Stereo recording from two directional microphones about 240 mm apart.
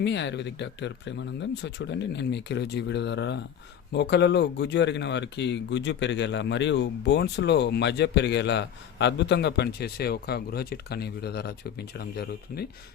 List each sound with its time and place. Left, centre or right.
0.0 s speech: left